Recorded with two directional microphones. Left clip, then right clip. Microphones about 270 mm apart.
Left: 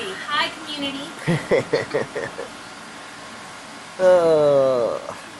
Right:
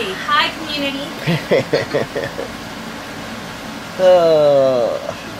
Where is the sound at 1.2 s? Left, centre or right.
Centre.